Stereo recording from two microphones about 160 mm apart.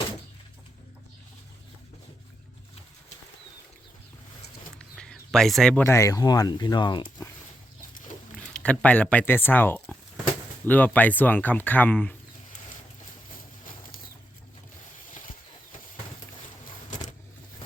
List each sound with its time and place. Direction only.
4.8 s a sound: 5° left (ahead or behind)
5.8 s speech: 15° left (ahead or behind)
8.4 s speech: 5° left (ahead or behind)